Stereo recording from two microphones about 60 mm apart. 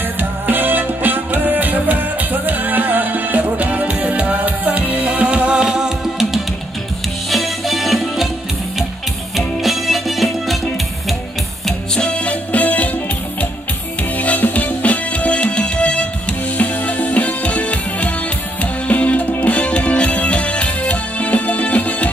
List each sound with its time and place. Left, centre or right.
0.2 s music: right; by 8.3 s centre
9.6 s music: centre
11.6 s music: centre
12.1 s music: left
14.1 s music: left